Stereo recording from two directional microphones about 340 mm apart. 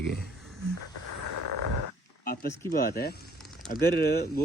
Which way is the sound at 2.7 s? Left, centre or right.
Left.